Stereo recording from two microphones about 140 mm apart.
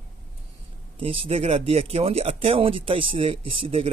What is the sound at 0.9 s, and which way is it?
Speech, 40° right (ahead or behind).